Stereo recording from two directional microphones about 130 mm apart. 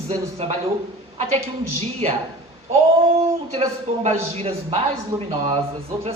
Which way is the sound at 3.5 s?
50° right (ahead or behind).